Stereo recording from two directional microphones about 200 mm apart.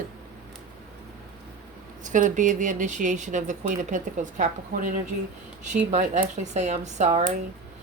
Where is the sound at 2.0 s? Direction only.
40° right (ahead or behind).